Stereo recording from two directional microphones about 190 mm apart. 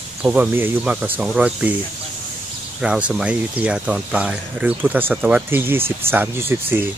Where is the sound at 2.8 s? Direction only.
5° right (ahead or behind).